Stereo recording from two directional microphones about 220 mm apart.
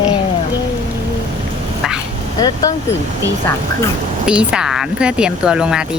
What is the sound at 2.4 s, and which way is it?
Speech, 15° left (ahead or behind).